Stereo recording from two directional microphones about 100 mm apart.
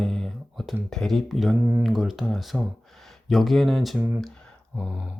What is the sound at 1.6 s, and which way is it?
Speech, 20° right (ahead or behind).